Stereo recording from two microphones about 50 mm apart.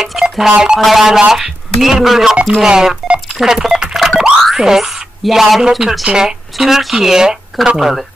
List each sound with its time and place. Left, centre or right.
0.0 s a sound: centre
0.5 s speech: centre
0.7 s speech: centre
4.2 s boing: centre
6.0 s speech: centre
6.5 s speech: centre